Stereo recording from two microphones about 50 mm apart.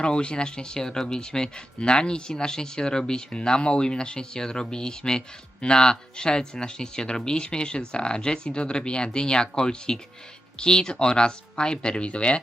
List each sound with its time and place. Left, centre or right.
0.0 s speech: centre